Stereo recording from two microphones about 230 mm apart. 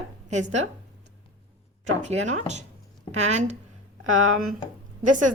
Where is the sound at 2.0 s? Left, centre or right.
Right.